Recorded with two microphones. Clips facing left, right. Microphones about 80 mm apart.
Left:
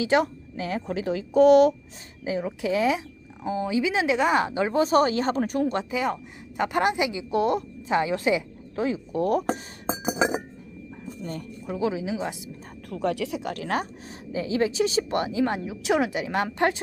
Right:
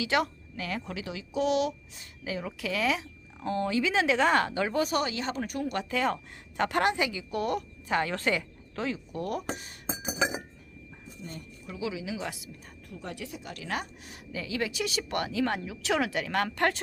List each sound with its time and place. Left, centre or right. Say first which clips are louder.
0.0 s a woman's voice: left 6 dB; left
2.2 s speech: left 7 dB; left
3.4 s speech: left 3 dB; centre; by 5.8 s left
5.9 s a woman's voice: left 2 dB; centre
9.1 s a woman's voice: left 9 dB; left
11.2 s speech: left 7 dB; left
12.9 s speech: left 13 dB; left
13.4 s speech: left 7 dB; left
14.3 s speech: left 8 dB; left